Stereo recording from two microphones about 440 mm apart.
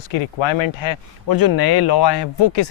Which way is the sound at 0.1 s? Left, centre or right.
Left.